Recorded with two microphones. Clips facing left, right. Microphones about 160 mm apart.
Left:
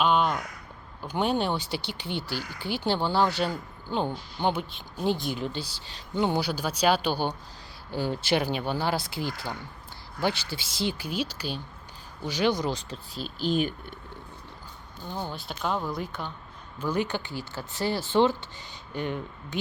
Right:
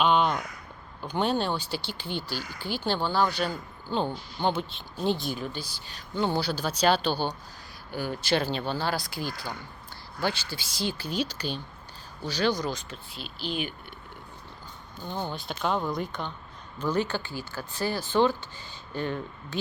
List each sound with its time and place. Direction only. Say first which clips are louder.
0.0 s a sound: even; 5° left (ahead or behind)
1.0 s speech: even; 10° left (ahead or behind)
2.3 s speech: left 1 dB; 65° left (ahead or behind)
2.6 s speech: left 2 dB; 20° left (ahead or behind)
6.2 s speech: even; 15° left (ahead or behind)
7.9 s speech: left 1 dB; 25° left (ahead or behind); by 11.6 s 5° left (ahead or behind)
12.2 s speech: left 1 dB; 20° left (ahead or behind); by 13.7 s 45° left (ahead or behind)
15.0 s speech: right 1 dB; 5° left (ahead or behind)